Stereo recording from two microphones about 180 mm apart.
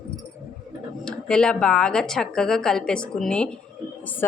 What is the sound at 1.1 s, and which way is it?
Speech, 5° left (ahead or behind).